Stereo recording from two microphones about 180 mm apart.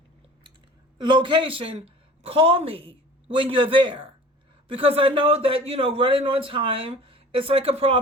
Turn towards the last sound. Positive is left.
turn(degrees=-30)  # may be behind; listen again after turning